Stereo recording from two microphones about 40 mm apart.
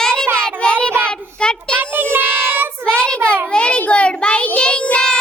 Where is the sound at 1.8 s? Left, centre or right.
Right.